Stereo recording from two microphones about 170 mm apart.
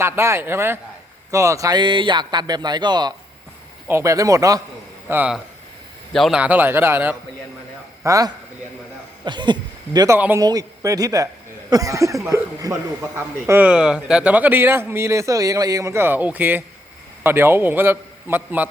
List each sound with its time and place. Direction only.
0.0 s a man's voice: 15° right (ahead or behind)
5.0 s a man's voice: 10° right (ahead or behind)
10.2 s a man's voice: 10° right (ahead or behind)
10.4 s a man's voice: 20° right (ahead or behind)